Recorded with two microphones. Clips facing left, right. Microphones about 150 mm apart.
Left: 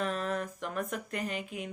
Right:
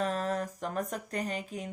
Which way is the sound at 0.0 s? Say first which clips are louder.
Right 2 dB; 40° right (ahead or behind).